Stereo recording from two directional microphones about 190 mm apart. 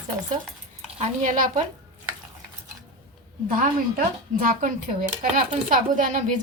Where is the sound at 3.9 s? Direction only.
45° right (ahead or behind).